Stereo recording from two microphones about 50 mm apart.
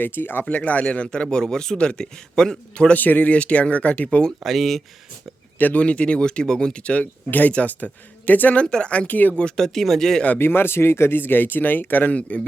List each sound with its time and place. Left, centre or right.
0.0 s speech: left
0.4 s a man's voice: left
2.9 s speech: left
4.4 s speech: centre
5.5 s speech: left
5.8 s speech: left
8.6 s speech: centre; by 9.3 s left
9.6 s a man's voice: centre
10.3 s speech: left